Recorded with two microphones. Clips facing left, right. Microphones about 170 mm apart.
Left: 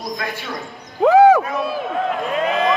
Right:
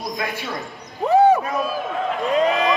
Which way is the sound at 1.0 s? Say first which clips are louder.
Left 4 dB; 90° left.